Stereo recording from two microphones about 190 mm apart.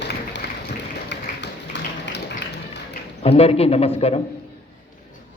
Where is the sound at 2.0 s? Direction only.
65° left (ahead or behind).